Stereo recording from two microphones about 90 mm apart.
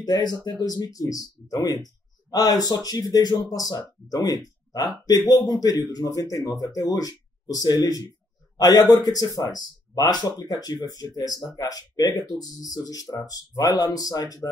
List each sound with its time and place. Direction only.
0.0 s speech: 50° left (ahead or behind)